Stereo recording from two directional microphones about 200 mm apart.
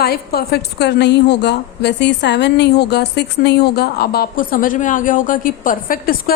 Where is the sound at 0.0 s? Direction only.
50° left (ahead or behind).